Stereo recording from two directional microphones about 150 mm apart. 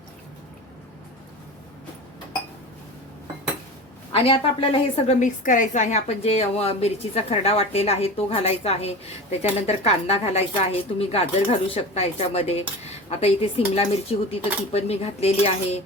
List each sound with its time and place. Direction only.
4.1 s a woman's voice: 40° left (ahead or behind)
5.2 s a woman's voice: 60° left (ahead or behind)